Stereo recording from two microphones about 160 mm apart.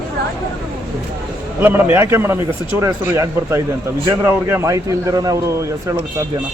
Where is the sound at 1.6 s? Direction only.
15° right (ahead or behind).